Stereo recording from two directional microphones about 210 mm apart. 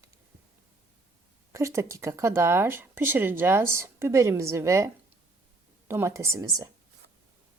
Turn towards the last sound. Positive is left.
turn(degrees=-15)  # may be behind; listen again after turning